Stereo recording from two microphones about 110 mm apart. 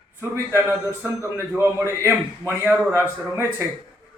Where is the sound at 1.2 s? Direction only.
25° right (ahead or behind).